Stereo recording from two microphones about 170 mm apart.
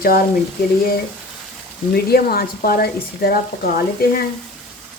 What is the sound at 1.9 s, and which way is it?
Speech, 65° left (ahead or behind).